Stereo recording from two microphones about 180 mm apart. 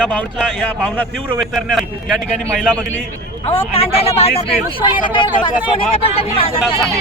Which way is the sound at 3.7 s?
30° left (ahead or behind).